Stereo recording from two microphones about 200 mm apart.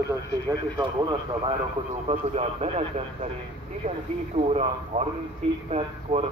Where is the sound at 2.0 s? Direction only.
30° right (ahead or behind).